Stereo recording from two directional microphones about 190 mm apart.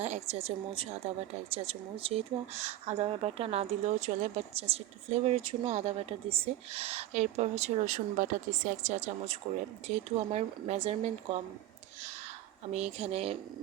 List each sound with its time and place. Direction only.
0.0 s speech: 35° right (ahead or behind)
12.7 s speech: 35° right (ahead or behind)